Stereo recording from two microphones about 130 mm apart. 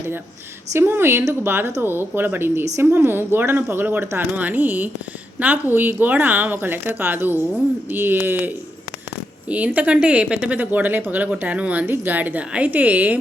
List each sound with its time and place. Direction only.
0.7 s speech: 20° right (ahead or behind)